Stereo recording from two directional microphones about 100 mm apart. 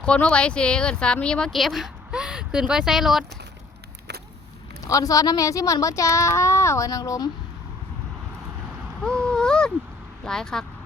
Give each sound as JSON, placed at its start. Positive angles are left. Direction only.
{"t": 0.0, "sound": "speech", "side_deg": 10}
{"t": 4.9, "sound": "speech", "side_deg": 35}
{"t": 9.0, "sound": "a sound", "side_deg": 10}
{"t": 10.2, "sound": "speech", "side_deg": 5}